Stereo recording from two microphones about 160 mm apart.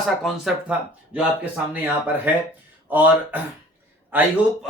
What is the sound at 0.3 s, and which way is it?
Speech, 5° right (ahead or behind).